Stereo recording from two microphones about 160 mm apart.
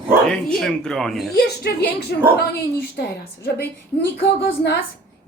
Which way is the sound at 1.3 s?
90° left.